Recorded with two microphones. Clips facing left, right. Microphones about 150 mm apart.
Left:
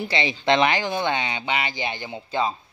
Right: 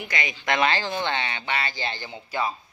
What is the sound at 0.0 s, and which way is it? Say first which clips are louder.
Speech: left 6 dB; 30° left (ahead or behind).